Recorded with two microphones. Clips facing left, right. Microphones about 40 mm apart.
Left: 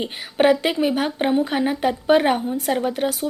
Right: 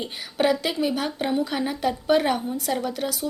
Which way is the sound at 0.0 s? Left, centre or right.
Left.